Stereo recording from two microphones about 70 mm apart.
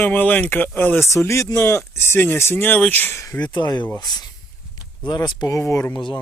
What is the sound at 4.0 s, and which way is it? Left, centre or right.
Speech, left.